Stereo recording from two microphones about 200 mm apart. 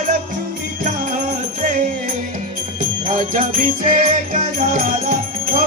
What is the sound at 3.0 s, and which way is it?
Music, 40° right (ahead or behind).